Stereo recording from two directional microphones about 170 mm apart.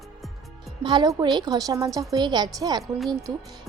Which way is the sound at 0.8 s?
25° right (ahead or behind).